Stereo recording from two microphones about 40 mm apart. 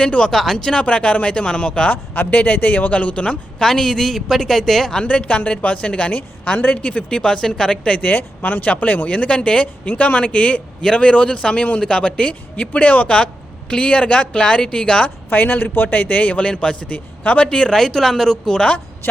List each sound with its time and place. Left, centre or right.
0.0 s speech: left
0.3 s speech: centre
0.9 s speech: left
1.9 s speech: left
2.9 s speech: left
3.6 s speech: centre
5.0 s speech: left
7.1 s speech: left
7.9 s speech: left
15.3 s speech: left
16.5 s speech: left
17.7 s speech: centre